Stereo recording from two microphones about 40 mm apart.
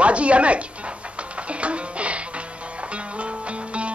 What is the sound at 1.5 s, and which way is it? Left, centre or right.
Music, right.